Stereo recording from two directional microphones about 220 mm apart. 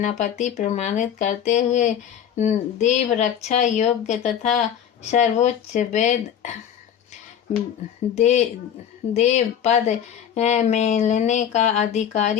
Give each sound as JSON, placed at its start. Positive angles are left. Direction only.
{"t": 0.0, "sound": "speech", "side_deg": 35}
{"t": 8.1, "sound": "speech", "side_deg": 30}